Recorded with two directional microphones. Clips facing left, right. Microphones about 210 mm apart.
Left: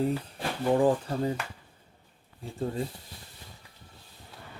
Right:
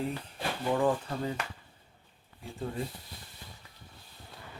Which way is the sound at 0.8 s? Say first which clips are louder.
Left 4 dB; 30° left (ahead or behind).